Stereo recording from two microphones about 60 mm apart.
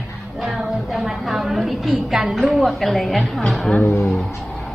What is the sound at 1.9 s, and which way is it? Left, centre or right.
A woman's voice, centre.